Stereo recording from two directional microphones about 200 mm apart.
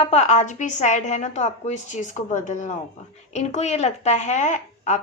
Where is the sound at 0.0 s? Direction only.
35° left (ahead or behind).